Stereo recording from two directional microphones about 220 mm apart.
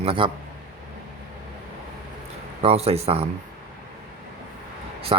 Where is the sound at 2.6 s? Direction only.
25° right (ahead or behind).